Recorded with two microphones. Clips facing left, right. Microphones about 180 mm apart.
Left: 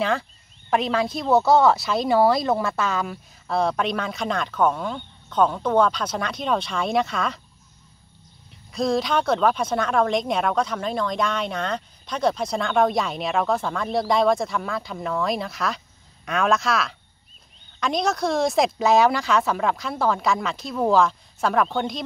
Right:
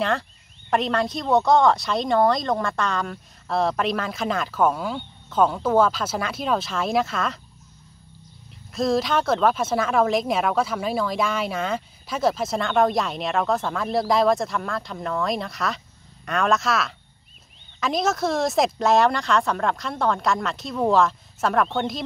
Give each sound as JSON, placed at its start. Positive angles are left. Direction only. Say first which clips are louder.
{"t": 0.7, "sound": "speech", "louder": "even", "side_deg": 0}
{"t": 8.7, "sound": "speech", "louder": "even", "side_deg": 0}